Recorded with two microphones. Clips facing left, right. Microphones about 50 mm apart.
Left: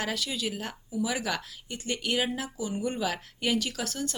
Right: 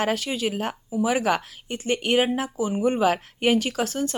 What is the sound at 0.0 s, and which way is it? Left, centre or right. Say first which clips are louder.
Speech: right 7 dB; right.